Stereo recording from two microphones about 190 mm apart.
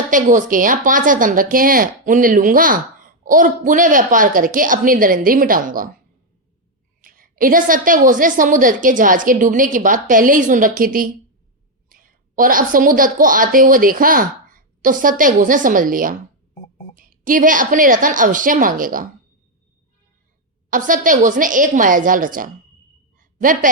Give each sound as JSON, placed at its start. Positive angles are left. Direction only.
{"t": 0.1, "sound": "a woman's voice", "side_deg": -40}
{"t": 7.0, "sound": "a woman's voice", "side_deg": -45}
{"t": 20.7, "sound": "a woman's voice", "side_deg": -45}
{"t": 23.1, "sound": "a sound", "side_deg": -45}